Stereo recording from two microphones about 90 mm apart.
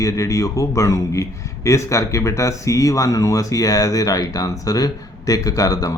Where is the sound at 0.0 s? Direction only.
35° left (ahead or behind).